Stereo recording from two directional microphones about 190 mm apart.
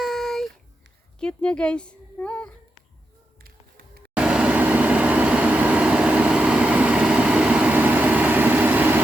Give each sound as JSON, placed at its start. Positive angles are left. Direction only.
{"t": 0.0, "sound": "a sound", "side_deg": 0}
{"t": 1.2, "sound": "a woman's voice", "side_deg": 5}
{"t": 3.4, "sound": "music", "side_deg": -50}
{"t": 4.1, "sound": "vehicle", "side_deg": -5}